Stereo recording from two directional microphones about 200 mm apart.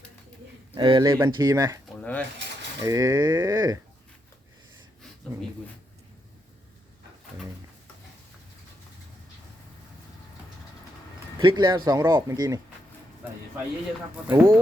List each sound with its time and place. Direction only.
0.8 s speech: 20° right (ahead or behind)
2.0 s a sound: 5° left (ahead or behind)
2.8 s speech: 15° right (ahead or behind)
11.3 s speech: 25° right (ahead or behind)
14.3 s speech: 20° right (ahead or behind)